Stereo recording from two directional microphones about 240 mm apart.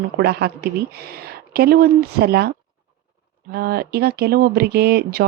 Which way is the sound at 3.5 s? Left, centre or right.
Right.